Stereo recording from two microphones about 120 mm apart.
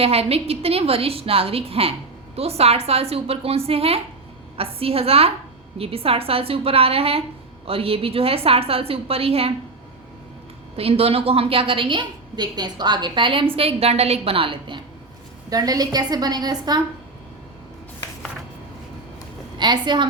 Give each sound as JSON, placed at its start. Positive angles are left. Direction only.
{"t": 0.0, "sound": "a woman's voice", "side_deg": -55}
{"t": 10.8, "sound": "a woman's voice", "side_deg": -55}
{"t": 13.6, "sound": "a woman's voice", "side_deg": -55}
{"t": 15.4, "sound": "a woman's voice", "side_deg": -30}
{"t": 19.5, "sound": "a woman's voice", "side_deg": -40}